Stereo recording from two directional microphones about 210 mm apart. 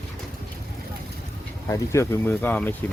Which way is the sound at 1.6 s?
15° left (ahead or behind).